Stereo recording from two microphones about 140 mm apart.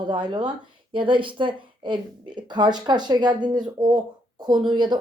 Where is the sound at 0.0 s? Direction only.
35° right (ahead or behind).